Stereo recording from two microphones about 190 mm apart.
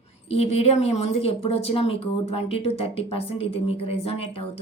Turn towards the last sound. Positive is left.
turn(degrees=30)  # may be behind; listen again after turning